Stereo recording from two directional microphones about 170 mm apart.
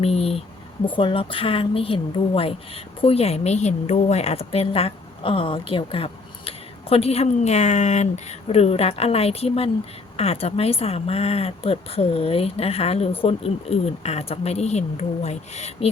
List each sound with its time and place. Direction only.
0.0 s a woman's voice: 35° left (ahead or behind)